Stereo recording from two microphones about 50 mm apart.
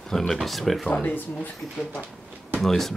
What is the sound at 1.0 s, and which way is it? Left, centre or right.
Speech, left.